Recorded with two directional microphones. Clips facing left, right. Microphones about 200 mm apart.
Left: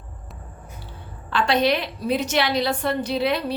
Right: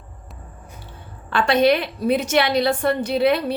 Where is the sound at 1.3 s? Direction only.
55° right (ahead or behind).